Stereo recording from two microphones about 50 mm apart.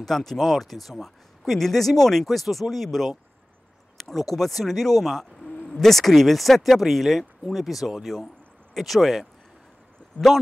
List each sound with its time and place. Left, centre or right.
0.0 s speech: centre
10.1 s a man's voice: left